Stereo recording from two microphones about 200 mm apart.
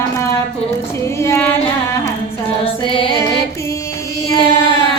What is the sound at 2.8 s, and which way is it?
Music, 25° left (ahead or behind).